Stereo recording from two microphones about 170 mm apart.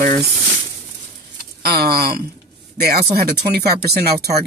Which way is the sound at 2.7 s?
70° right (ahead or behind).